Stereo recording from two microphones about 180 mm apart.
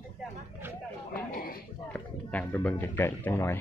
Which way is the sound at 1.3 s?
55° left (ahead or behind).